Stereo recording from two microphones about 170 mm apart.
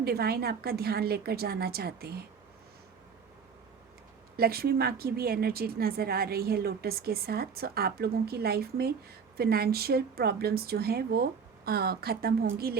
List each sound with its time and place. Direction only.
0.0 s a woman's voice: 65° right (ahead or behind)
4.4 s a woman's voice: 65° right (ahead or behind)